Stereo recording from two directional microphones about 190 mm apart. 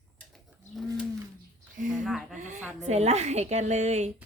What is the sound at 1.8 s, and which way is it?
A woman's voice, 45° right (ahead or behind).